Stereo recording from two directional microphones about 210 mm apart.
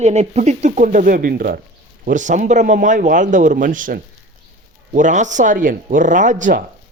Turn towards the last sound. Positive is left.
turn(degrees=-40)  # may be behind; listen again after turning